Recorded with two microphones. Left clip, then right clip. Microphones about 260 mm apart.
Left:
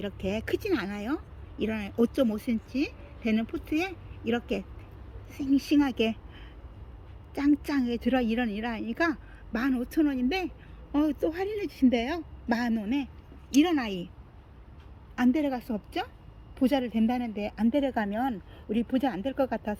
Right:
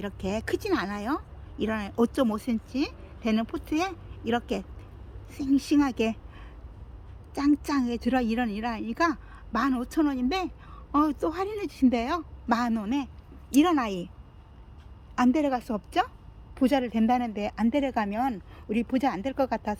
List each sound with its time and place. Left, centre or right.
0.0 s speech: centre
15.1 s speech: centre